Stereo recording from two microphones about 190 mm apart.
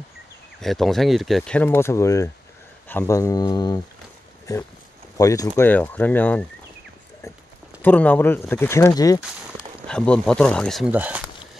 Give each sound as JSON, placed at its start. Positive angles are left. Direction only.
{"t": 0.6, "sound": "speech", "side_deg": 0}
{"t": 5.1, "sound": "speech", "side_deg": 15}
{"t": 7.8, "sound": "speech", "side_deg": 10}
{"t": 9.8, "sound": "speech", "side_deg": 5}
{"t": 10.9, "sound": "speech", "side_deg": -10}